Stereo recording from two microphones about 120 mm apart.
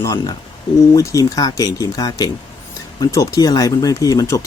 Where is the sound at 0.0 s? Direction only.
30° left (ahead or behind).